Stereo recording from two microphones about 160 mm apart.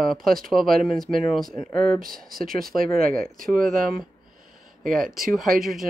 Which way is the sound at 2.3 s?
65° right (ahead or behind).